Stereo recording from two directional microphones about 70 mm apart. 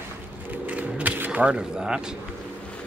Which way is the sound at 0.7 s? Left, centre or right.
Right.